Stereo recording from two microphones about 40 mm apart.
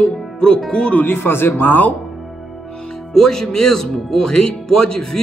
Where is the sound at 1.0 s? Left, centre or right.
Left.